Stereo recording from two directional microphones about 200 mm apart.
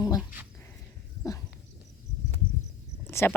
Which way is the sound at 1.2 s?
15° left (ahead or behind).